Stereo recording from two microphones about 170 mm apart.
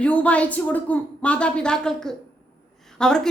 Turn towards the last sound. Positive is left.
turn(degrees=5)  # may be behind; listen again after turning